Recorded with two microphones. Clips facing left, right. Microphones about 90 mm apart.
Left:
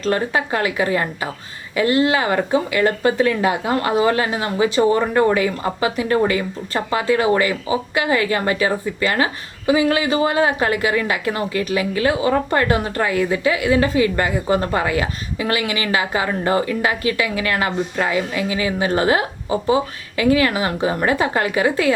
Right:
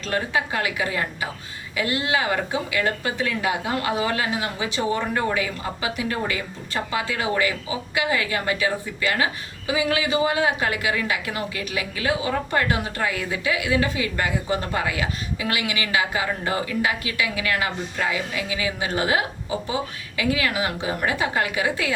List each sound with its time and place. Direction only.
0.0 s speech: 40° left (ahead or behind)